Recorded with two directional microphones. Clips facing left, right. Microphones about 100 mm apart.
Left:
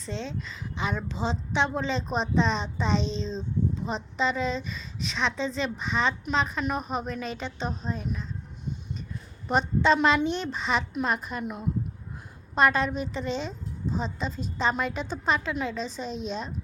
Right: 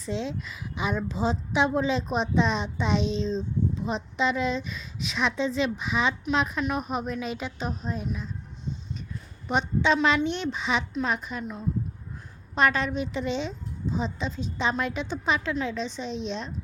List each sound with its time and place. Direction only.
0.0 s a woman's voice: 5° right (ahead or behind)
9.5 s a woman's voice: centre (ahead or behind)
11.4 s a woman's voice: 15° left (ahead or behind)
12.5 s a woman's voice: centre (ahead or behind)